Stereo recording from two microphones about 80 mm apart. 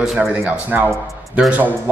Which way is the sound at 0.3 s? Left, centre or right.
Centre.